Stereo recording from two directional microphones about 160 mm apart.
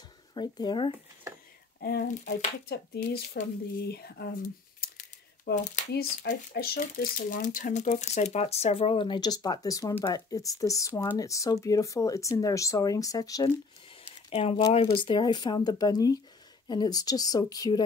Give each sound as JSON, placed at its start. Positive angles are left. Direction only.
{"t": 0.3, "sound": "speech", "side_deg": 25}
{"t": 1.8, "sound": "speech", "side_deg": 75}
{"t": 4.7, "sound": "speech", "side_deg": 60}
{"t": 6.8, "sound": "speech", "side_deg": 55}
{"t": 14.3, "sound": "speech", "side_deg": 40}